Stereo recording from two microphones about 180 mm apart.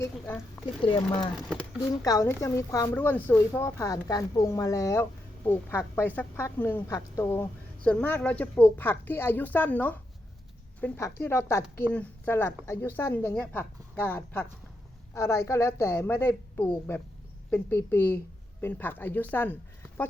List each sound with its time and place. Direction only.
1.3 s speech: centre (ahead or behind)
1.9 s a woman's voice: 20° left (ahead or behind)